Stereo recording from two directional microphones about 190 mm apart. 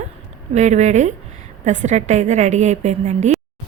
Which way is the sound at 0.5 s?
40° right (ahead or behind).